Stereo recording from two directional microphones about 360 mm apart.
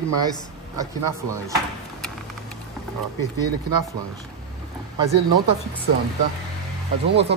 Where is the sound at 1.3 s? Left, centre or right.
Centre.